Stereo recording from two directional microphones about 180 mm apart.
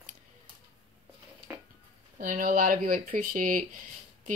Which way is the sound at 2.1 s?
50° right (ahead or behind).